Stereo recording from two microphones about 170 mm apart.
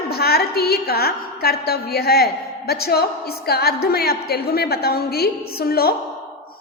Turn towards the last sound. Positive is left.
turn(degrees=65)  # may be behind; listen again after turning